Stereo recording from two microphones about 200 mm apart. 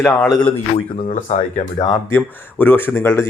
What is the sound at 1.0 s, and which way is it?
Speech, 35° left (ahead or behind).